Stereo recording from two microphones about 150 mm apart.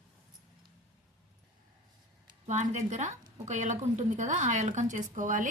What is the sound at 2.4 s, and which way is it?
A woman's voice, 50° right (ahead or behind).